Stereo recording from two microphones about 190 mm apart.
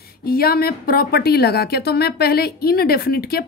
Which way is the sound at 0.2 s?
55° left (ahead or behind).